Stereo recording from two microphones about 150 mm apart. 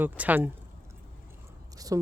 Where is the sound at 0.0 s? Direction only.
10° right (ahead or behind).